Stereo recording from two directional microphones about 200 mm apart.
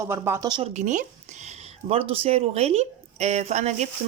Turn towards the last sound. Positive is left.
turn(degrees=-35)  # may be behind; listen again after turning